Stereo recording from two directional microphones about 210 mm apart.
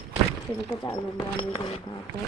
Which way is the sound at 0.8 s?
20° left (ahead or behind).